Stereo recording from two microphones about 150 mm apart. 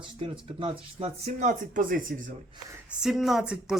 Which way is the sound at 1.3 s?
55° right (ahead or behind).